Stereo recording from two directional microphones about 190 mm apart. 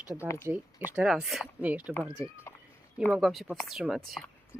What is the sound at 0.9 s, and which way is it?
Speech, 5° right (ahead or behind).